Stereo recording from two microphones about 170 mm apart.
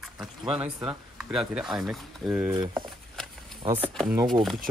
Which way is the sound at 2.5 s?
25° right (ahead or behind).